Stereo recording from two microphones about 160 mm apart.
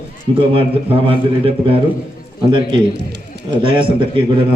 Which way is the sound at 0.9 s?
35° right (ahead or behind).